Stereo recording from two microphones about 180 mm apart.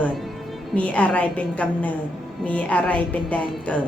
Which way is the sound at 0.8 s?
10° left (ahead or behind).